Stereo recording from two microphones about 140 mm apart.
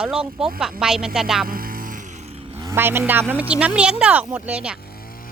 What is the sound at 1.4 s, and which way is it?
Music, 90° right.